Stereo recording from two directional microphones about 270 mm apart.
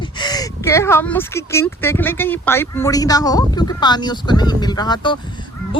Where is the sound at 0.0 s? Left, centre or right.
Centre.